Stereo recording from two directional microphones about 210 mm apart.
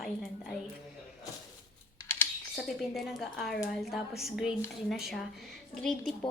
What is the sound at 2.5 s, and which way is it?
Speech, centre (ahead or behind).